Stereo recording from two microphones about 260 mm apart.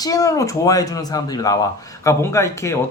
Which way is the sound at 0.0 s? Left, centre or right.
Centre.